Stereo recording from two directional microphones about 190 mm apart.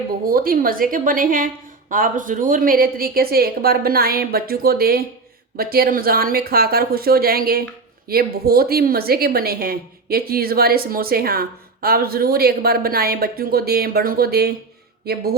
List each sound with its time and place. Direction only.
0.3 s a woman's voice: 50° right (ahead or behind)